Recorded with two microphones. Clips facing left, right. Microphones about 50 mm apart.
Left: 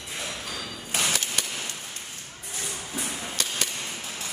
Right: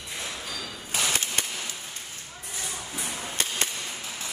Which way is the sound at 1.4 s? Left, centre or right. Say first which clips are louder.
Even; right.